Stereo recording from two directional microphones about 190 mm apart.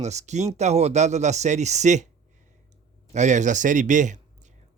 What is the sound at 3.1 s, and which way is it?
Speech, 40° right (ahead or behind).